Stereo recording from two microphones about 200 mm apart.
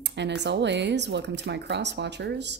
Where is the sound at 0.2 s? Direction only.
60° right (ahead or behind).